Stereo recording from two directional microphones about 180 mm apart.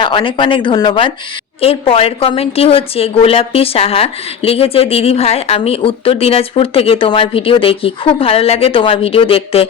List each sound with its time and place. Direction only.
0.0 s a woman's voice: 30° left (ahead or behind)